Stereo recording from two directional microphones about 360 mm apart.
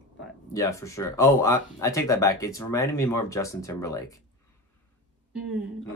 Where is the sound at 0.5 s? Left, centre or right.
Centre.